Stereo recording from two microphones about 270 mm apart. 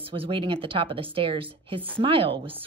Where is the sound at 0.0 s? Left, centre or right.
Centre.